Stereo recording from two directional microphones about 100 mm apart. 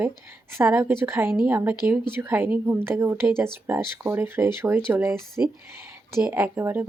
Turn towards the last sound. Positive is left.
turn(degrees=-20)  # may be behind; listen again after turning